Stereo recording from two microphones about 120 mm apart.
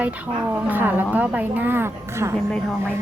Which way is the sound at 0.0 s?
10° right (ahead or behind).